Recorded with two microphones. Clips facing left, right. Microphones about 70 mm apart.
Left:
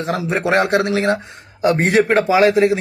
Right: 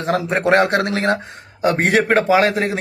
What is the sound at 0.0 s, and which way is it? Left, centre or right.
Speech, right.